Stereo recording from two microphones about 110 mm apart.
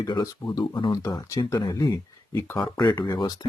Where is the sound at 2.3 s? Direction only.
25° left (ahead or behind).